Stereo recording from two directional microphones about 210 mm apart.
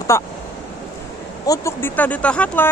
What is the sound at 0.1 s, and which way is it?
Speech, 15° left (ahead or behind).